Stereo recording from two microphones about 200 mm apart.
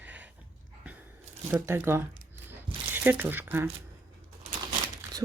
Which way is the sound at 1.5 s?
10° right (ahead or behind).